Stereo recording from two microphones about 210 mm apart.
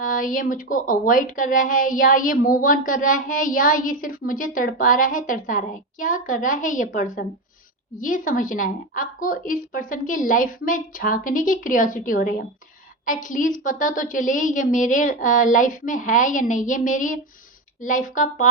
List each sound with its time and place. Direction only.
0.0 s a woman's voice: 40° left (ahead or behind)